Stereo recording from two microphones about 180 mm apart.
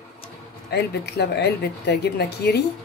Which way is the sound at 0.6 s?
65° left (ahead or behind).